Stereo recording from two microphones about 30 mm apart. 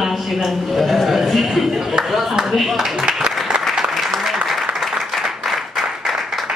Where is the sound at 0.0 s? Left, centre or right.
Centre.